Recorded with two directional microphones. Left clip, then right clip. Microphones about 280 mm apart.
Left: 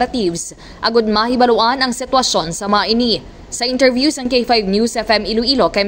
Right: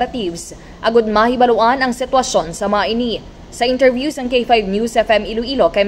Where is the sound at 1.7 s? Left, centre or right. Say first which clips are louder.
Even; left.